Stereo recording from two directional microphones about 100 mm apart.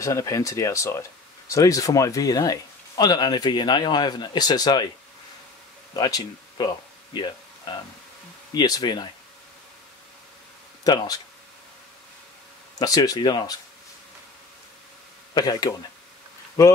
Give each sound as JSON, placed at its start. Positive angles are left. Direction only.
{"t": 0.0, "sound": "speech", "side_deg": 30}
{"t": 5.9, "sound": "speech", "side_deg": 40}
{"t": 10.8, "sound": "speech", "side_deg": 40}
{"t": 12.7, "sound": "speech", "side_deg": 40}
{"t": 15.3, "sound": "speech", "side_deg": 40}